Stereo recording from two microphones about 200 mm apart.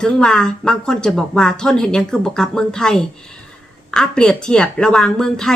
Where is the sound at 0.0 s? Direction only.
5° left (ahead or behind).